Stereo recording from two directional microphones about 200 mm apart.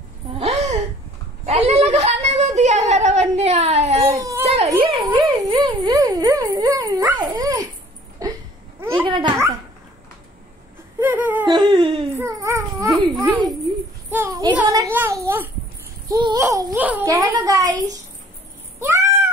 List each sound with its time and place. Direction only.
0.3 s a sound: 35° right (ahead or behind)
4.0 s baby cry: 15° right (ahead or behind)
4.8 s dog: 25° right (ahead or behind)
8.2 s a sound: 15° right (ahead or behind)
11.0 s whimper: 10° right (ahead or behind)
11.7 s a sound: 25° right (ahead or behind)
12.2 s dog: 15° right (ahead or behind)
13.1 s a child's voice: 15° right (ahead or behind)
18.8 s cat: 15° right (ahead or behind)